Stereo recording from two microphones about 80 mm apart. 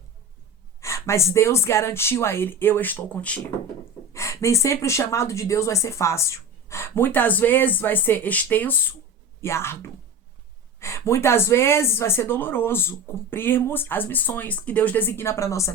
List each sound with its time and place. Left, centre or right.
0.8 s a woman's voice: left; by 3.4 s centre
4.1 s a woman's voice: left
9.4 s a woman's voice: left